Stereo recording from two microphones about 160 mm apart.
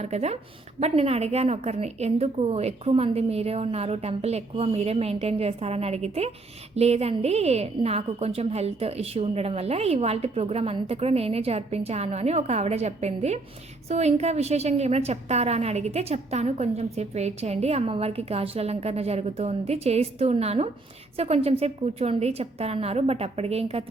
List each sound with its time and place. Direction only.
0.0 s a woman's voice: 45° right (ahead or behind)